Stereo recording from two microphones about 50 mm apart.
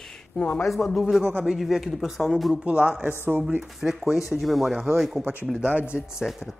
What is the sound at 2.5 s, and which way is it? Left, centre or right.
Speech, right.